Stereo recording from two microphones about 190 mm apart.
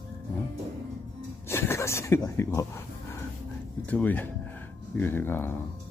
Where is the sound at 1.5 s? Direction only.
10° left (ahead or behind).